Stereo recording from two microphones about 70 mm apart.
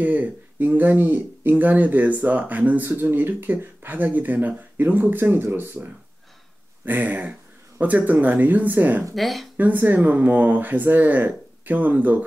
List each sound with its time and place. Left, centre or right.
0.0 s speech: right
6.9 s speech: right
9.1 s speech: centre
9.6 s speech: right